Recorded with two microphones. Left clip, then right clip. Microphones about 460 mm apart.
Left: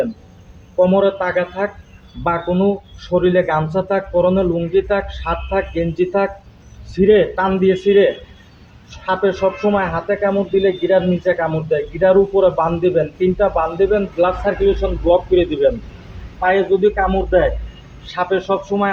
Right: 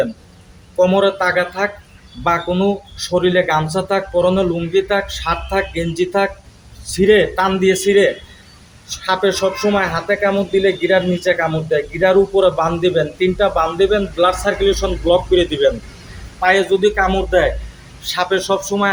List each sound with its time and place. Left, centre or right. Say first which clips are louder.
0.8 s speech: even; left